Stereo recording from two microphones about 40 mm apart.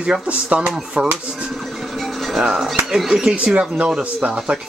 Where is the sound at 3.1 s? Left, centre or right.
Centre.